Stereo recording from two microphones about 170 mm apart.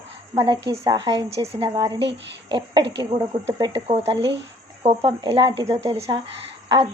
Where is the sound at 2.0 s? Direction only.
90° right.